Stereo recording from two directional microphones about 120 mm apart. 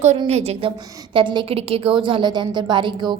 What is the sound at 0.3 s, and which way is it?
Speech, 60° right (ahead or behind).